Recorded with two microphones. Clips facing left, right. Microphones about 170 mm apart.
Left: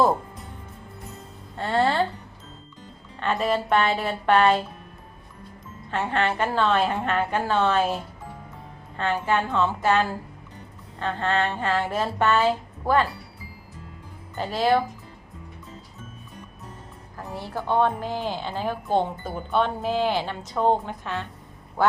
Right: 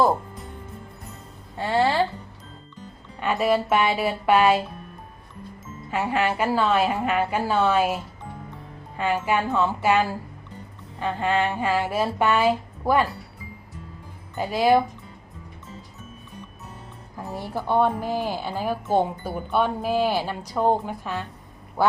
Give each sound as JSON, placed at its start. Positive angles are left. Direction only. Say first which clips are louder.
{"t": 1.5, "sound": "speech", "louder": "right 1 dB", "side_deg": -5}
{"t": 3.2, "sound": "a woman's voice", "louder": "right 2 dB", "side_deg": -10}
{"t": 5.9, "sound": "a woman's voice", "louder": "right 1 dB", "side_deg": -10}
{"t": 9.0, "sound": "a woman's voice", "louder": "right 1 dB", "side_deg": -10}
{"t": 14.3, "sound": "a woman's voice", "louder": "right 2 dB", "side_deg": -10}
{"t": 17.2, "sound": "a woman's voice", "louder": "right 2 dB", "side_deg": -10}
{"t": 21.8, "sound": "quack", "louder": "even", "side_deg": -10}